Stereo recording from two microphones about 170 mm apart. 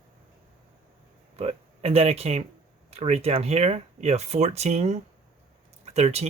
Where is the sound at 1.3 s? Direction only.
35° right (ahead or behind).